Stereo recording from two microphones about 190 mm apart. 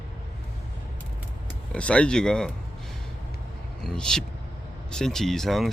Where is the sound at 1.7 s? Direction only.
5° left (ahead or behind).